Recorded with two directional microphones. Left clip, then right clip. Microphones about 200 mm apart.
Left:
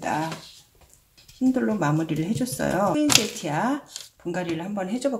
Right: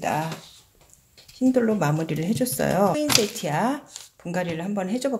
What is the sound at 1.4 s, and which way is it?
Speech, 50° right (ahead or behind).